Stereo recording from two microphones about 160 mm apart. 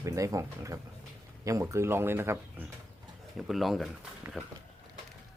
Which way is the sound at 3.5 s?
Centre (ahead or behind).